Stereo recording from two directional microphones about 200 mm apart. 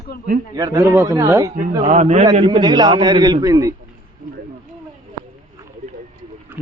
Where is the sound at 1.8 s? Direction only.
35° right (ahead or behind).